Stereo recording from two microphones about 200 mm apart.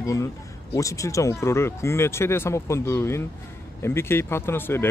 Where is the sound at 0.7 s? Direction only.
15° left (ahead or behind).